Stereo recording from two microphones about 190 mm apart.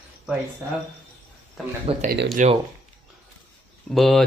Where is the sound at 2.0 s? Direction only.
55° right (ahead or behind).